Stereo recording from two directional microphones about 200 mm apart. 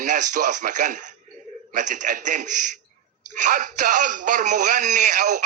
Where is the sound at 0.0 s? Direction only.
40° right (ahead or behind).